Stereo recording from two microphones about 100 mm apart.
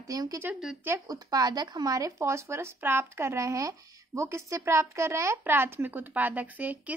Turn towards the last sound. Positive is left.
turn(degrees=-15)  # may be behind; listen again after turning